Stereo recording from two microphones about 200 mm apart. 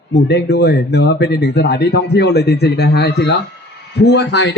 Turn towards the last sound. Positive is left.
turn(degrees=60)  # may be behind; listen again after turning